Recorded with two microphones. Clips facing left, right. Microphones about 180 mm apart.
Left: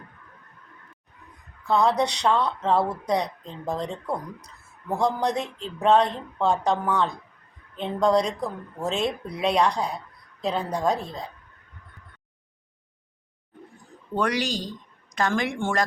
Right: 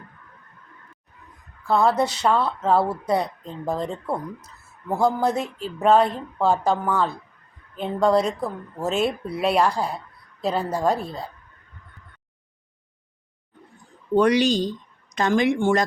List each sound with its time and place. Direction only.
1.6 s speech: 5° right (ahead or behind)
14.2 s a woman's voice: 20° right (ahead or behind)